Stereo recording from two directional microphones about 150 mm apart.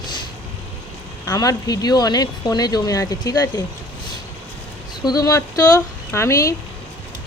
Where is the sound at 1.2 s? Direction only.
25° left (ahead or behind).